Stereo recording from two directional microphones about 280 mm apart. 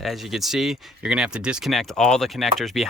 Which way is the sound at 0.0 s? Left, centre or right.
Centre.